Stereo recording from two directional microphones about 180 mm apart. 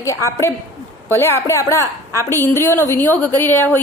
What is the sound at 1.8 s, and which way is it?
Speech, 15° right (ahead or behind).